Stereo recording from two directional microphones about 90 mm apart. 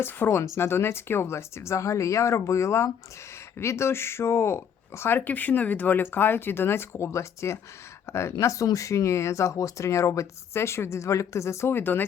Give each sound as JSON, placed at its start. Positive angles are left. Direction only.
{"t": 0.0, "sound": "speech", "side_deg": 30}